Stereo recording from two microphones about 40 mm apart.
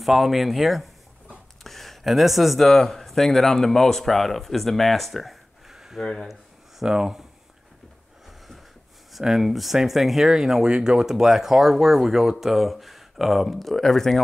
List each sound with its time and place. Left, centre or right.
0.0 s speech: centre
6.8 s speech: centre
9.2 s speech: centre